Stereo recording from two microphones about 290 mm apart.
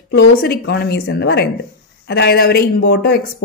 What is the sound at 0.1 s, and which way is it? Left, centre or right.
Speech, left.